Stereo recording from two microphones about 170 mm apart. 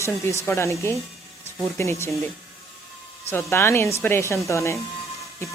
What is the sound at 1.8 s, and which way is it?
Speech, 15° left (ahead or behind).